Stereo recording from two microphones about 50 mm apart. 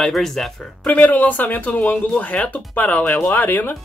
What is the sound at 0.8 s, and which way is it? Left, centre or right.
Speech, left.